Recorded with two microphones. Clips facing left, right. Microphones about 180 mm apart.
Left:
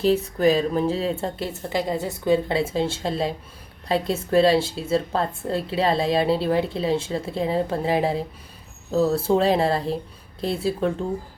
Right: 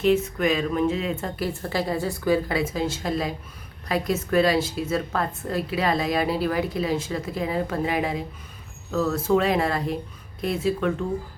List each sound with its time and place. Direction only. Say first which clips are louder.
0.0 s a woman's voice: left 2 dB; 35° left (ahead or behind)